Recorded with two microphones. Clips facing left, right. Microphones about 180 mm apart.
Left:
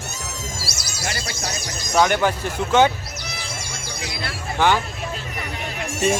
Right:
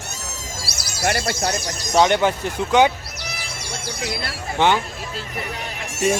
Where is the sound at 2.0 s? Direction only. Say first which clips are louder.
Right 2 dB; 25° right (ahead or behind).